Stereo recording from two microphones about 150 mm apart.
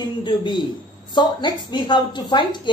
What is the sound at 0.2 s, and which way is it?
A woman's voice, 30° left (ahead or behind).